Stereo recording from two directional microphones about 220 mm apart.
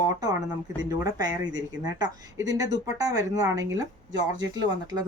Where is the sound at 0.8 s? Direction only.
15° right (ahead or behind).